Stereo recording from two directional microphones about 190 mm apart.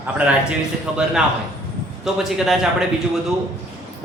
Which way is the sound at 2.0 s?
Centre (ahead or behind).